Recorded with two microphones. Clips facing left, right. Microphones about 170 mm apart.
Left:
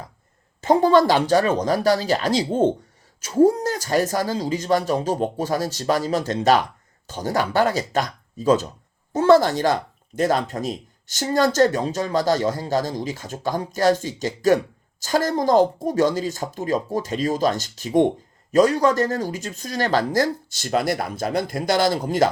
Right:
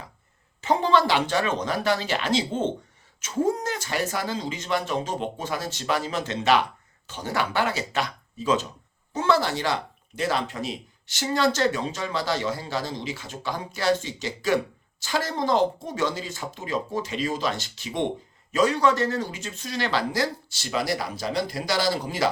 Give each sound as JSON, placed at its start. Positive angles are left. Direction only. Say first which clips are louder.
{"t": 0.6, "sound": "speech", "louder": "left 6 dB", "side_deg": 40}